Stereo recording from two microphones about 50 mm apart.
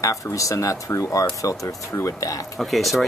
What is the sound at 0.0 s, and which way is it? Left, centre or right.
Speech, left.